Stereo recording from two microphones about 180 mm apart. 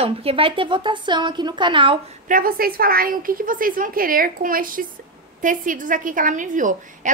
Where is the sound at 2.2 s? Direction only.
50° right (ahead or behind).